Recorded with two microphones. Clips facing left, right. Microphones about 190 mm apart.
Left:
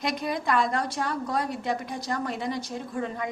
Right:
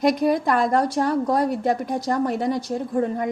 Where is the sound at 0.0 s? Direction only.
45° right (ahead or behind).